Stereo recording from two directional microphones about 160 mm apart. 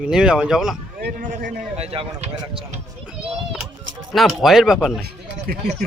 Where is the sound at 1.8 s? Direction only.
40° right (ahead or behind).